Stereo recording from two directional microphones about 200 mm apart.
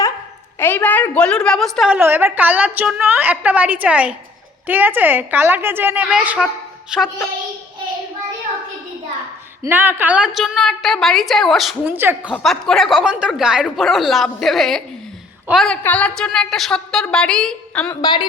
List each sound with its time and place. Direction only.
0.6 s a woman's voice: 10° left (ahead or behind)
2.0 s a woman's voice: 10° right (ahead or behind)
9.6 s a woman's voice: 10° right (ahead or behind)
11.9 s a woman's voice: 10° right (ahead or behind)
12.3 s a woman's voice: centre (ahead or behind)
18.0 s speech: 20° left (ahead or behind)